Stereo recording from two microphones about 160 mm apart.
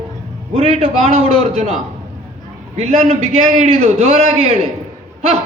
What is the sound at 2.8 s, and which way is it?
A man's voice, 40° right (ahead or behind).